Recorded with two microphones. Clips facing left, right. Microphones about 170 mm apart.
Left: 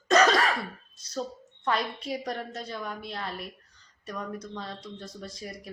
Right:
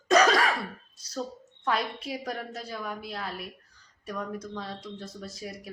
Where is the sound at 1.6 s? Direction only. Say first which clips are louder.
Even; 5° right (ahead or behind).